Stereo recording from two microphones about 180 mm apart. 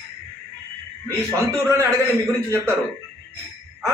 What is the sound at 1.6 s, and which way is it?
A man's voice, 15° right (ahead or behind).